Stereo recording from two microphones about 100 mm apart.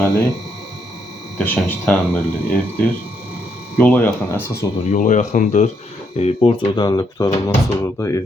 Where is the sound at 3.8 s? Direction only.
20° left (ahead or behind).